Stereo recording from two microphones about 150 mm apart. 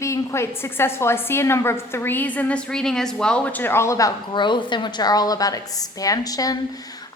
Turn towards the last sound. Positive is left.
turn(degrees=25)  # may be behind; listen again after turning